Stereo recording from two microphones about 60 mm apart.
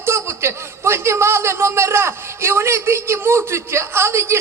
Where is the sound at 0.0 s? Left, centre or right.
Right.